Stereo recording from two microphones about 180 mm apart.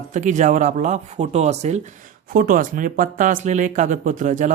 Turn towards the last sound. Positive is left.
turn(degrees=-45)  # may be behind; listen again after turning